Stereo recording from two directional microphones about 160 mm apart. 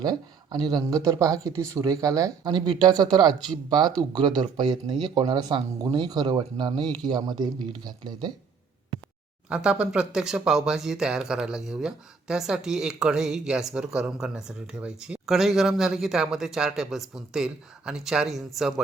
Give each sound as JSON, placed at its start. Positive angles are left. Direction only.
{"t": 0.0, "sound": "speech", "side_deg": -25}
{"t": 9.5, "sound": "speech", "side_deg": -5}